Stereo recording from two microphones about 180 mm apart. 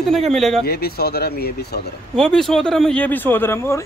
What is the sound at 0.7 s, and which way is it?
Speech, 60° left (ahead or behind).